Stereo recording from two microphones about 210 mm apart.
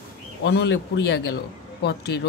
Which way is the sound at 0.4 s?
55° left (ahead or behind).